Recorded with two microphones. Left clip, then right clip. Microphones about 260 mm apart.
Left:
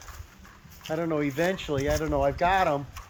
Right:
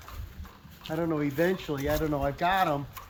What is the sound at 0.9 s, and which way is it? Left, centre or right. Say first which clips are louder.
Speech: left 2 dB; left.